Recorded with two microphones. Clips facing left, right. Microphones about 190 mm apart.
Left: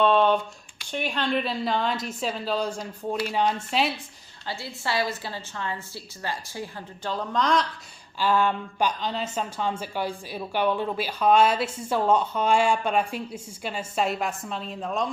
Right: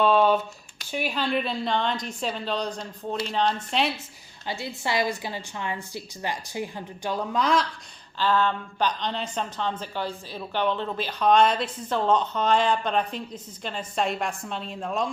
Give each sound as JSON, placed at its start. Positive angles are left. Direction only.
{"t": 0.0, "sound": "a sound", "side_deg": -5}
{"t": 0.9, "sound": "a woman's voice", "side_deg": -5}
{"t": 4.4, "sound": "a woman's voice", "side_deg": -20}
{"t": 8.2, "sound": "speech", "side_deg": 10}